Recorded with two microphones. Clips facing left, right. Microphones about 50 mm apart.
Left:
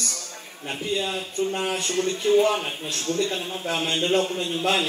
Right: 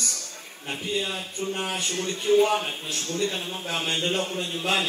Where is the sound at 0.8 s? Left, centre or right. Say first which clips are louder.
Left 2 dB; left.